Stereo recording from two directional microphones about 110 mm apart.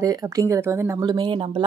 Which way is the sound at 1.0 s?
40° right (ahead or behind).